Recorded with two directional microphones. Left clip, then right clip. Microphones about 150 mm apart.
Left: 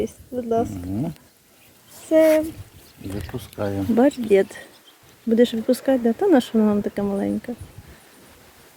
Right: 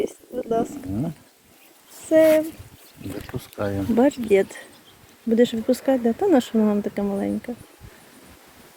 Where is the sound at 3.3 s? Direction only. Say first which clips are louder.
Even; 20° right (ahead or behind).